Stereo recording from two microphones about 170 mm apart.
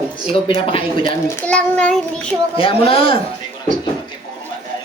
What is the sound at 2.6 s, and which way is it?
Speech, 35° left (ahead or behind).